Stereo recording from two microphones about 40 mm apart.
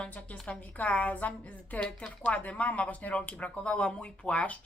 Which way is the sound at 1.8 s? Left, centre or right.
Left.